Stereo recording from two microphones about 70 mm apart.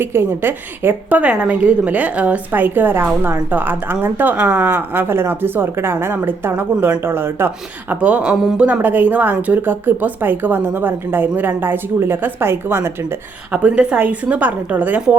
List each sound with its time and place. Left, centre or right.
0.0 s a woman's voice: right
1.2 s a woman's voice: centre; by 7.9 s right
8.0 s speech: centre
8.3 s a man's voice: centre
8.5 s speech: centre; by 13.1 s right
13.5 s speech: right